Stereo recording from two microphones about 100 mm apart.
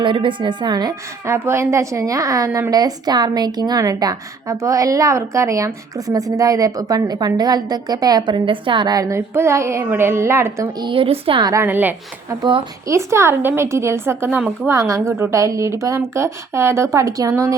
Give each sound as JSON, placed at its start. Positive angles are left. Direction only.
{"t": 0.0, "sound": "a woman's voice", "side_deg": -55}
{"t": 1.2, "sound": "a woman's voice", "side_deg": -25}
{"t": 8.4, "sound": "a woman's voice", "side_deg": -55}
{"t": 10.8, "sound": "a woman's voice", "side_deg": -55}
{"t": 11.6, "sound": "a woman's voice", "side_deg": -20}
{"t": 14.7, "sound": "a woman's voice", "side_deg": -30}